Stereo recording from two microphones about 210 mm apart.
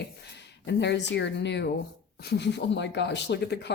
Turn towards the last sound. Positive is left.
turn(degrees=55)  # may be behind; listen again after turning